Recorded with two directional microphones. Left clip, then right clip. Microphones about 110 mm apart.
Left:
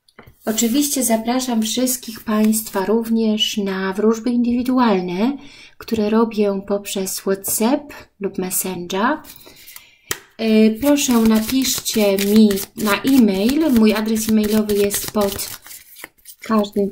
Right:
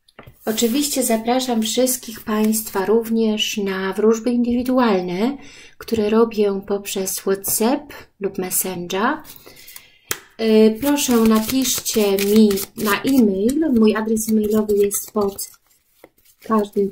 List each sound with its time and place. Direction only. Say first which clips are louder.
0.5 s speech: left 1 dB; 35° left (ahead or behind)
12.2 s speech: even; 20° left (ahead or behind); by 14.3 s 40° left (ahead or behind)
14.5 s speech: right 2 dB; 30° left (ahead or behind)